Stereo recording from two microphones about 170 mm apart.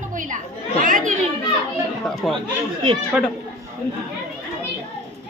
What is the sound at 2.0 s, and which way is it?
Speech, centre (ahead or behind).